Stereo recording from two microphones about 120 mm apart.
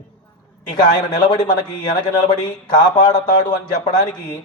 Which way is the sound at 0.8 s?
35° left (ahead or behind).